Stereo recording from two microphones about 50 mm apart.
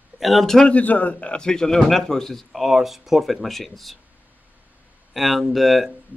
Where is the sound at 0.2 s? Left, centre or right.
Centre.